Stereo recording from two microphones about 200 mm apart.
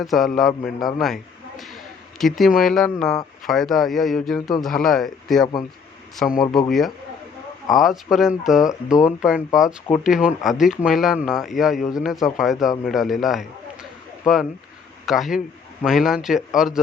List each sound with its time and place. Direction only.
0.0 s speech: centre (ahead or behind)
0.9 s a sound: centre (ahead or behind)
2.1 s speech: centre (ahead or behind)
6.7 s speech: centre (ahead or behind)